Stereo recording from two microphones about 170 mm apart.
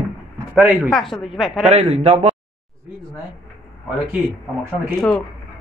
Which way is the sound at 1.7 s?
40° right (ahead or behind).